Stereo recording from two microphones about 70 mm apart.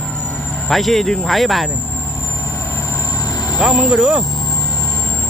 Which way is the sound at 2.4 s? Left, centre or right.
Left.